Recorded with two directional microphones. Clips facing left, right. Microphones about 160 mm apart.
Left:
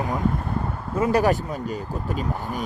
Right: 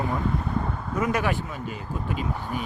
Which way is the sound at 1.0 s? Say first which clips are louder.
Left 6 dB; 35° left (ahead or behind).